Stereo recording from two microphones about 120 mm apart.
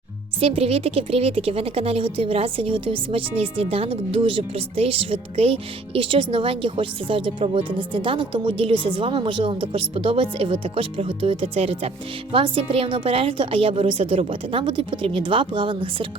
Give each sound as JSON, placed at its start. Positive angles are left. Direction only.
{"t": 0.3, "sound": "a woman's voice", "side_deg": -55}